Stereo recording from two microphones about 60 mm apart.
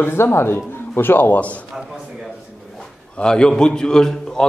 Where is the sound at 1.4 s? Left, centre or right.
Left.